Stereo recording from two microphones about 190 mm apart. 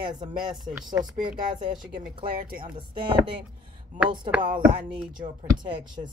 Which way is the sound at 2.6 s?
25° right (ahead or behind).